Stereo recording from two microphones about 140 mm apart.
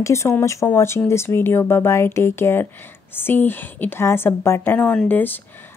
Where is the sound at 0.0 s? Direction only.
20° left (ahead or behind).